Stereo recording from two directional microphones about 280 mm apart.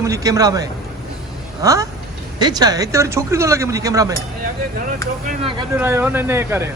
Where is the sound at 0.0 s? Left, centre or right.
Centre.